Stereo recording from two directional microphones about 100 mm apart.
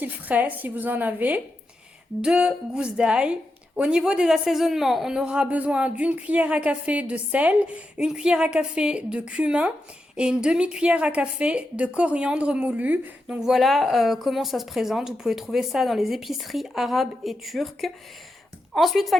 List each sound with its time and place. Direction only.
0.0 s a woman's voice: 15° right (ahead or behind); by 19.2 s centre (ahead or behind)